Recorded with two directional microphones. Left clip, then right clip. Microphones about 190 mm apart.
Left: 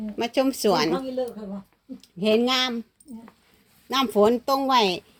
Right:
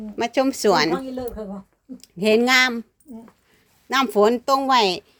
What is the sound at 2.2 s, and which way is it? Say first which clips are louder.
Speech: right 5 dB; 25° right (ahead or behind).